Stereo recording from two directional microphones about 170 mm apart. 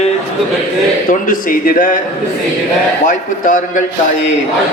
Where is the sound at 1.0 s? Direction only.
55° left (ahead or behind).